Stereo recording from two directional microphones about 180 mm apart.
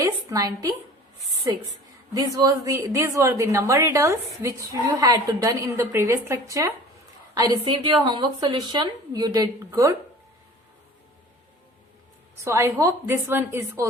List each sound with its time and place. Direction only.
0.0 s a woman's voice: 20° right (ahead or behind)
2.1 s a woman's voice: 20° right (ahead or behind)
12.4 s a woman's voice: 15° right (ahead or behind)